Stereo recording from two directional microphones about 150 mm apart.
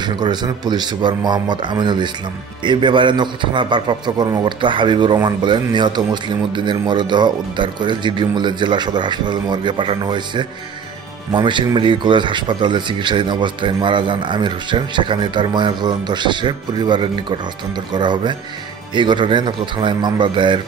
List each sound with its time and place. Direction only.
0.0 s a man's voice: 30° right (ahead or behind)